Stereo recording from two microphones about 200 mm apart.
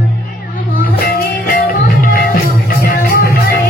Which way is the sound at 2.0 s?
45° left (ahead or behind).